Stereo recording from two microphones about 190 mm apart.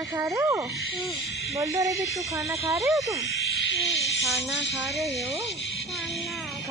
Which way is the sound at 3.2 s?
75° left (ahead or behind).